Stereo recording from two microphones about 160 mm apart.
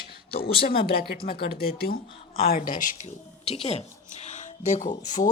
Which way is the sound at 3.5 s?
40° left (ahead or behind).